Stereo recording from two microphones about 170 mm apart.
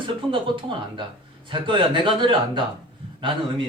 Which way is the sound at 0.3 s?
30° right (ahead or behind).